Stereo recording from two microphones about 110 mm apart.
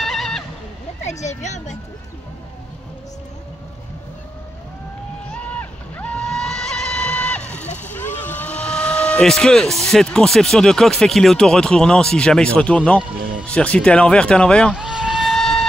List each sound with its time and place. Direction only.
0.0 s neigh: centre (ahead or behind)
1.0 s a sound: 90° left
1.4 s speech: 90° left
5.3 s vehicle: 10° left (ahead or behind)
7.9 s speech: 15° left (ahead or behind)
14.8 s vehicle: 5° right (ahead or behind)